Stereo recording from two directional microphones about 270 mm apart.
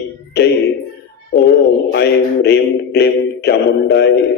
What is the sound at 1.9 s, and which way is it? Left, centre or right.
Music, left.